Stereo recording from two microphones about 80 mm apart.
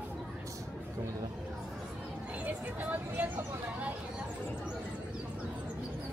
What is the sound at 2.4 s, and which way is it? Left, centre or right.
Vehicle, right.